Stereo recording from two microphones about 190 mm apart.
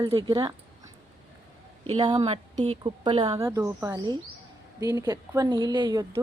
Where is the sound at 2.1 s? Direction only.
30° right (ahead or behind).